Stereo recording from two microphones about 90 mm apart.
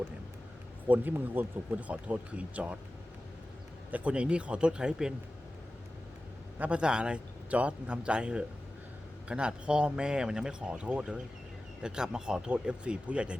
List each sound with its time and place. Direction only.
0.9 s speech: 20° right (ahead or behind)
3.9 s speech: 15° right (ahead or behind)
6.6 s speech: 15° right (ahead or behind)